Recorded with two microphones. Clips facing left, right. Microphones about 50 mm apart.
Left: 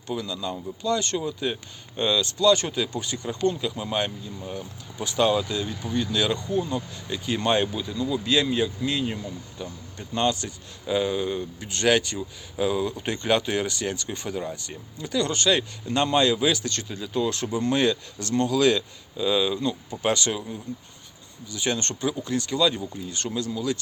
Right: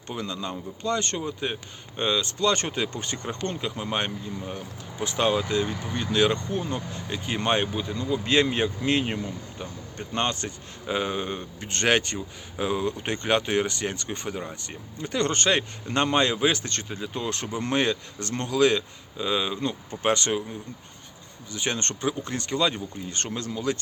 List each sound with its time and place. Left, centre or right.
0.1 s speech: right
9.6 s speech: right
15.0 s speech: right
21.5 s speech: right